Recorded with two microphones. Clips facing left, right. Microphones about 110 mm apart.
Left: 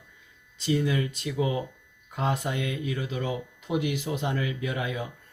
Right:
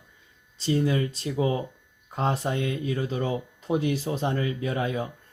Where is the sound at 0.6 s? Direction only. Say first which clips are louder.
Right 2 dB; 30° right (ahead or behind).